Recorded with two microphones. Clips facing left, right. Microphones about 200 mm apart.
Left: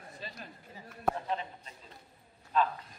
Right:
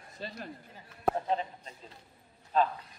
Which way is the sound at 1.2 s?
35° right (ahead or behind).